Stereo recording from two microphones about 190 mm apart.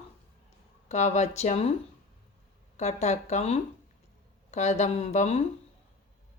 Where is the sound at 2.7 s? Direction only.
35° left (ahead or behind).